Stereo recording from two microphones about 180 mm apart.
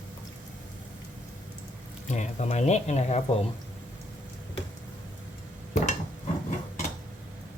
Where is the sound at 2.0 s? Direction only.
40° left (ahead or behind).